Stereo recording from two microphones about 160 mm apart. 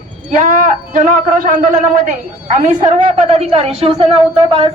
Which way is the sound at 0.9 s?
55° right (ahead or behind).